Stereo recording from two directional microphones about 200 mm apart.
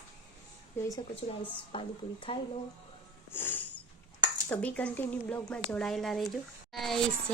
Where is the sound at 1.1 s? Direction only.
25° left (ahead or behind).